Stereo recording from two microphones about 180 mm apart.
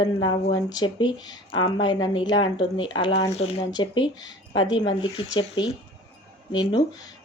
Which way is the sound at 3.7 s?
25° left (ahead or behind).